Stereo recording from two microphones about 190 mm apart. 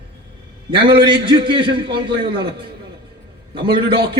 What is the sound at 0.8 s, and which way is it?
A man's voice, 25° right (ahead or behind).